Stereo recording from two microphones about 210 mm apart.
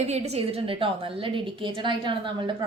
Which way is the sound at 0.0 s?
30° right (ahead or behind).